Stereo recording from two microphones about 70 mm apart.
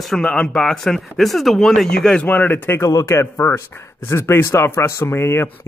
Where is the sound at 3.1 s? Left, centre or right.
Left.